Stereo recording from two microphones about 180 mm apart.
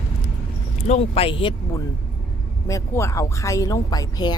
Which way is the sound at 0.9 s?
35° left (ahead or behind).